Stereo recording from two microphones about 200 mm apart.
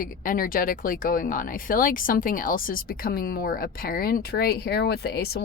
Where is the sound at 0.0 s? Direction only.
45° left (ahead or behind).